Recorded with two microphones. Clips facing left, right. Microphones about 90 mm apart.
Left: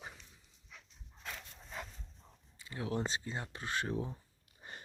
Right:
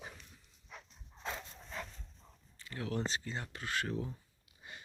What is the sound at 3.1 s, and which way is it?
Speech, 20° left (ahead or behind).